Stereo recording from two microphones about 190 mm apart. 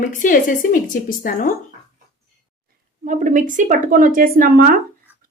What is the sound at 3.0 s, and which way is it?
A woman's voice, 40° right (ahead or behind).